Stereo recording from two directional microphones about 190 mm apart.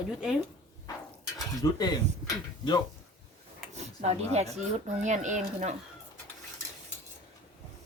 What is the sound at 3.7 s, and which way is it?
Speech, 35° right (ahead or behind).